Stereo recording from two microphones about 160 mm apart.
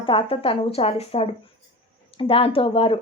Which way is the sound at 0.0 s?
35° left (ahead or behind).